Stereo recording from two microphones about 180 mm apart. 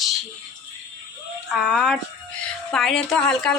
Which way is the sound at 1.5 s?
Centre (ahead or behind).